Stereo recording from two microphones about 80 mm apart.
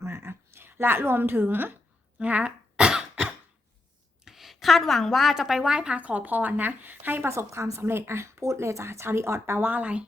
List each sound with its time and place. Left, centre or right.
0.0 s a sound: right
2.1 s cough: centre
4.3 s a woman's voice: centre; by 7.3 s right
7.3 s a woman's voice: right; by 10.1 s centre